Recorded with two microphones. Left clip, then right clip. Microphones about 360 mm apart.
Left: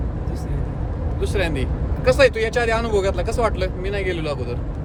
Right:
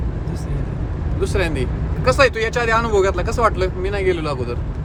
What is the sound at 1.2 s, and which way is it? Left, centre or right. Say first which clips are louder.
Speech: right 2 dB; centre.